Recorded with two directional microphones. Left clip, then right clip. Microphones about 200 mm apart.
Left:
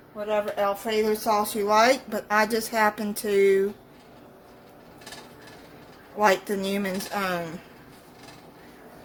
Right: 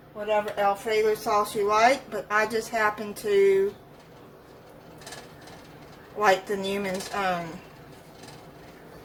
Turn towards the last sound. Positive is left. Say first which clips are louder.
# right 1 dB
turn(degrees=50)  # may be behind; listen again after turning